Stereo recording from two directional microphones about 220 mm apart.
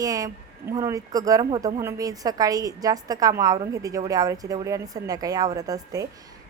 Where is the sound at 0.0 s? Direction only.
15° right (ahead or behind).